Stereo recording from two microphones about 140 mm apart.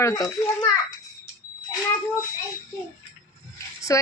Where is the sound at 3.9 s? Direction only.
20° left (ahead or behind).